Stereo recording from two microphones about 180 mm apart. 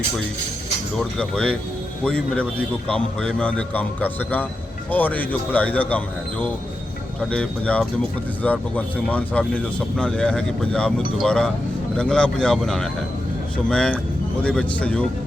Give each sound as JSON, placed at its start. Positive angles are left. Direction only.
{"t": 0.9, "sound": "a man's voice", "side_deg": 5}
{"t": 7.3, "sound": "a man's voice", "side_deg": 5}